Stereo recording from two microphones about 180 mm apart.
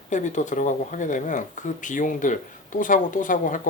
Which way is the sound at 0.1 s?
40° left (ahead or behind).